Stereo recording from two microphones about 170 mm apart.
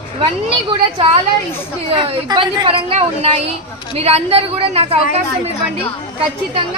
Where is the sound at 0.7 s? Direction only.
35° right (ahead or behind).